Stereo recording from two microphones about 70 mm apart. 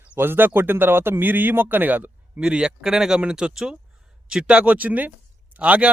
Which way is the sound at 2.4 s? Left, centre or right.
Centre.